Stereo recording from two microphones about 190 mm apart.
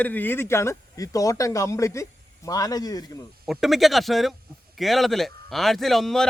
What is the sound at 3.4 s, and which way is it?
A man's voice, centre (ahead or behind).